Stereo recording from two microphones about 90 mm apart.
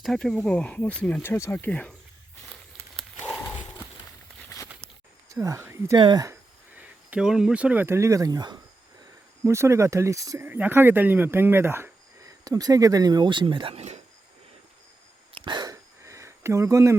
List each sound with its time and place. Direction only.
0.0 s speech: 5° left (ahead or behind)
1.2 s speech: 25° left (ahead or behind)
2.5 s crumpling: centre (ahead or behind)
3.2 s horse: 5° left (ahead or behind)
4.4 s a sound: 35° left (ahead or behind)
5.3 s speech: 35° right (ahead or behind)
6.0 s speech: 55° right (ahead or behind)
6.7 s speech: 10° right (ahead or behind)
7.9 s speech: 30° right (ahead or behind); by 8.5 s 50° right (ahead or behind)
9.4 s speech: 30° right (ahead or behind)
10.4 s speech: 20° right (ahead or behind)
12.5 s speech: 45° right (ahead or behind); by 13.7 s 70° right (ahead or behind)
15.4 s a sound: 55° right (ahead or behind)
15.7 s a sound: 35° right (ahead or behind)